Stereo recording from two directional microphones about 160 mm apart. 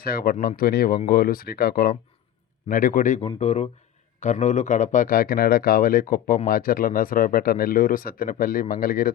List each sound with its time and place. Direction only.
0.0 s speech: 70° left (ahead or behind)
3.2 s speech: 40° left (ahead or behind); by 9.1 s 65° left (ahead or behind)